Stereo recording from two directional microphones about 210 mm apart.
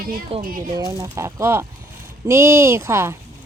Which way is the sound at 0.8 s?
15° right (ahead or behind).